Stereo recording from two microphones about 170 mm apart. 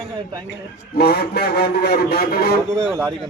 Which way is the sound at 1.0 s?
65° left (ahead or behind).